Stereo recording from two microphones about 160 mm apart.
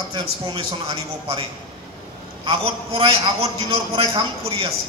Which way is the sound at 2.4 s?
35° right (ahead or behind).